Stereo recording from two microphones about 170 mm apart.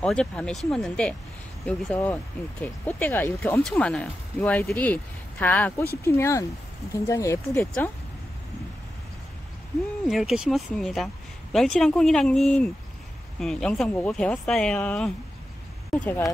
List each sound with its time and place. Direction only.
0.0 s speech: 5° left (ahead or behind)
7.5 s speech: 5° left (ahead or behind)
10.0 s speech: 5° right (ahead or behind)